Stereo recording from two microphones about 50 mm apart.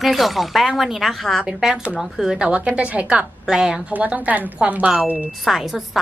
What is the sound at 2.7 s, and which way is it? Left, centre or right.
Speech, right.